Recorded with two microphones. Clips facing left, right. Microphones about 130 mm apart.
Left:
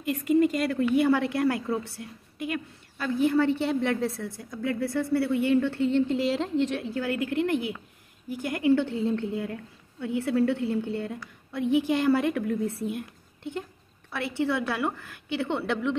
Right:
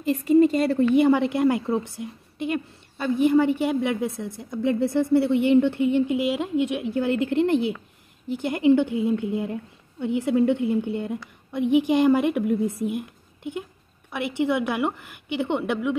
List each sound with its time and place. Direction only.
0.0 s a woman's voice: 30° right (ahead or behind); by 6.9 s 10° right (ahead or behind)
6.9 s a woman's voice: 25° right (ahead or behind)